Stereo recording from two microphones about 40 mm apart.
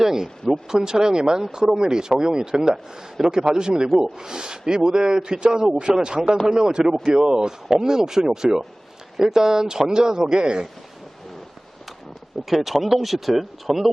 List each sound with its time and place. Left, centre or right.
0.0 s speech: centre
12.5 s speech: centre